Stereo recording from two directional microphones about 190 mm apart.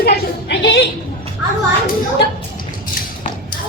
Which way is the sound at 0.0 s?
65° left (ahead or behind).